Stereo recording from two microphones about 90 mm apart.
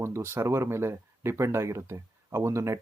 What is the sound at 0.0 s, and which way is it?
Speech, 30° right (ahead or behind).